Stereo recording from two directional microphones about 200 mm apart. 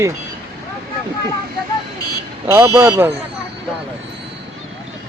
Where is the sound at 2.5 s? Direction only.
10° right (ahead or behind).